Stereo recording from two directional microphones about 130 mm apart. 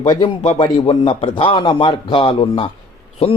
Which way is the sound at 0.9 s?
40° left (ahead or behind).